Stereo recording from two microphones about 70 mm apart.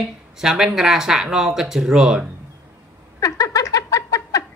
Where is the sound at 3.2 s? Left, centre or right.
Left.